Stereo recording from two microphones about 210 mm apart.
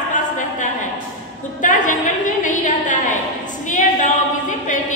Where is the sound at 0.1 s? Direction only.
35° left (ahead or behind).